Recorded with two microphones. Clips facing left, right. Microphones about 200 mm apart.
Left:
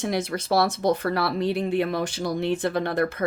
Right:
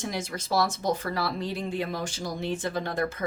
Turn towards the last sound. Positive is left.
turn(degrees=65)  # may be behind; listen again after turning